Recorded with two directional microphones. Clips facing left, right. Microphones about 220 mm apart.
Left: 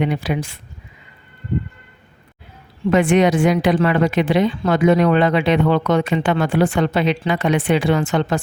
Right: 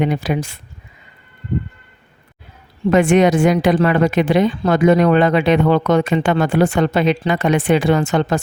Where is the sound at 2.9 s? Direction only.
45° right (ahead or behind).